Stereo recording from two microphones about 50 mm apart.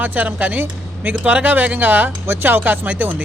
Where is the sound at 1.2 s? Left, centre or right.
Right.